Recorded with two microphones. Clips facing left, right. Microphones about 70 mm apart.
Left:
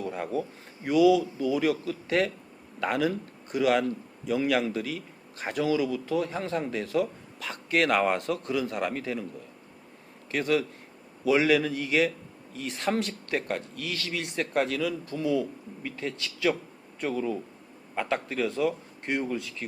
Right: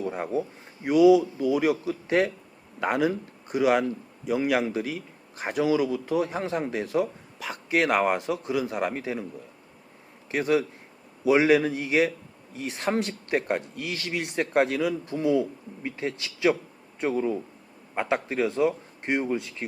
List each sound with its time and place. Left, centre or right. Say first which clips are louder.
0.0 s a sound: right 2 dB; right
0.9 s a man's voice: right 3 dB; centre
10.3 s a man's voice: right 2 dB; centre